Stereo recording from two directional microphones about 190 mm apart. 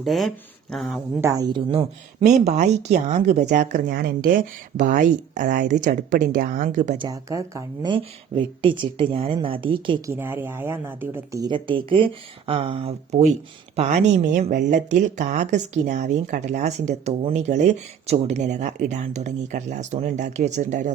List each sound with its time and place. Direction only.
0.0 s speech: centre (ahead or behind)
1.2 s speech: 20° right (ahead or behind)
2.2 s speech: 35° right (ahead or behind)
7.0 s speech: 20° right (ahead or behind)
10.1 s speech: 10° right (ahead or behind); by 20.9 s 40° right (ahead or behind)